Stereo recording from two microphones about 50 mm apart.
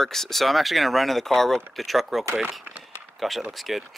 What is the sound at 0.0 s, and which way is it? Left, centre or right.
Speech, centre.